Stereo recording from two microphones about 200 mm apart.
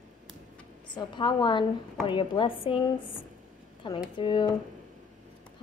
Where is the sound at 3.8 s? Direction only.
25° left (ahead or behind).